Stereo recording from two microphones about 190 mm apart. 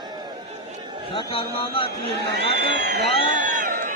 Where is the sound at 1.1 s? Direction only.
25° left (ahead or behind).